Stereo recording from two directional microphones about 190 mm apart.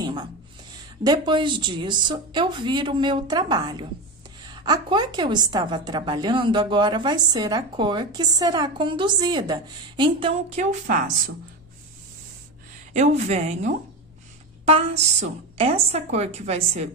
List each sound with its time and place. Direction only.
0.0 s a sound: 20° right (ahead or behind)
1.0 s a woman's voice: 20° right (ahead or behind)
12.9 s a woman's voice: 35° right (ahead or behind)